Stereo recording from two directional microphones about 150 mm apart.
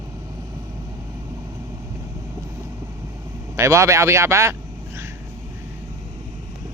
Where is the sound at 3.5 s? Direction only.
20° right (ahead or behind).